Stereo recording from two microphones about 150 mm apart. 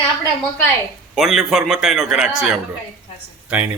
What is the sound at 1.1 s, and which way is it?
A man's voice, centre (ahead or behind).